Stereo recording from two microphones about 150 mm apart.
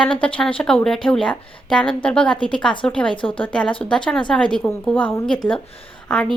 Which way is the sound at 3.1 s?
35° left (ahead or behind).